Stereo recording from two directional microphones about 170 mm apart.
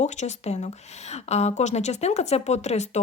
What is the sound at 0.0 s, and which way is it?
A woman's voice, 40° left (ahead or behind).